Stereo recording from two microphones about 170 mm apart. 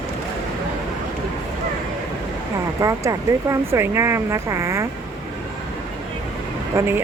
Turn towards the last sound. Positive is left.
turn(degrees=-15)  # may be behind; listen again after turning